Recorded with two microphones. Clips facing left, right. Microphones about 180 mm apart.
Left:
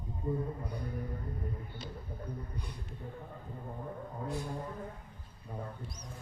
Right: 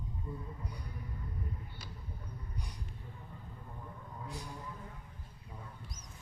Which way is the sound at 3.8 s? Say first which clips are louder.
Left 7 dB; 50° left (ahead or behind).